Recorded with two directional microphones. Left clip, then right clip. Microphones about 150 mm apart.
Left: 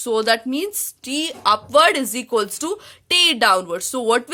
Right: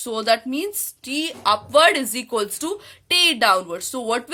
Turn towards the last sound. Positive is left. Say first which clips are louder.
# left 5 dB
turn(degrees=40)  # may be behind; listen again after turning